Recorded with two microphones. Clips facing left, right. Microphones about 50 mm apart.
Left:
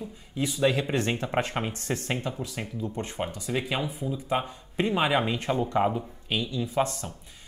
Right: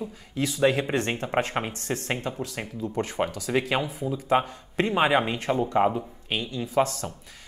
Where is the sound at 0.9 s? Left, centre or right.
Right.